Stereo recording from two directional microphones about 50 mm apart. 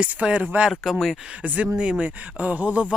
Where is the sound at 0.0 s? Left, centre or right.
Right.